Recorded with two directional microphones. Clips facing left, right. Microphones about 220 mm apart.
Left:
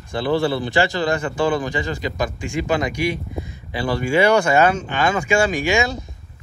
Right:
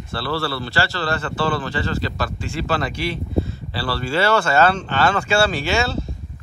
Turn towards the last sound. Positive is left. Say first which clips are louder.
# left 2 dB
turn(degrees=15)  # may be behind; listen again after turning